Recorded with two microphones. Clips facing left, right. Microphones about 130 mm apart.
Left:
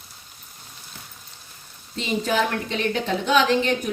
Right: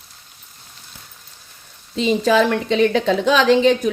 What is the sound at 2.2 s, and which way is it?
Speech, 90° right.